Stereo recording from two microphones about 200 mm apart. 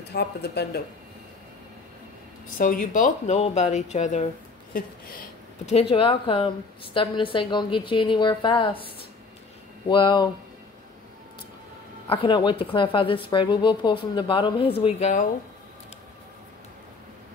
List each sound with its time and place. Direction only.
0.1 s speech: 55° left (ahead or behind)
2.5 s speech: 40° left (ahead or behind)
4.7 s speech: 45° left (ahead or behind)
5.7 s a woman's voice: 30° left (ahead or behind)
9.8 s a woman's voice: 25° left (ahead or behind)
12.1 s a woman's voice: 25° left (ahead or behind)